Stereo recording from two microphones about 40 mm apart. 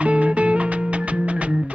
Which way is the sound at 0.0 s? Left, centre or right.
Right.